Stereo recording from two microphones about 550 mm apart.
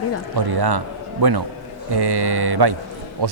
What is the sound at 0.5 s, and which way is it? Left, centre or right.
A man's voice, right.